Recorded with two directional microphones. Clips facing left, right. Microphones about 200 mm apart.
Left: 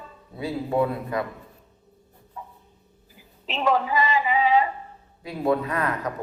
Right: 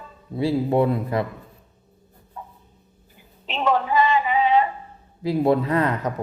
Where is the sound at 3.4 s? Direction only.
Centre (ahead or behind).